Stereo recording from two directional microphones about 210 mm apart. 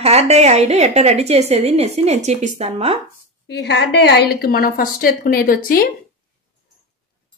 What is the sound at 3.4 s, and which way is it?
Speech, 50° left (ahead or behind).